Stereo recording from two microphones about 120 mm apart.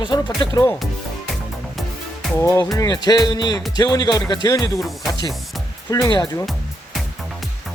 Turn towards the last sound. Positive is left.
turn(degrees=35)  # may be behind; listen again after turning